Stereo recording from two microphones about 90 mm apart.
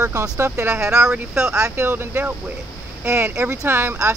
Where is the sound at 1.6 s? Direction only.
25° right (ahead or behind).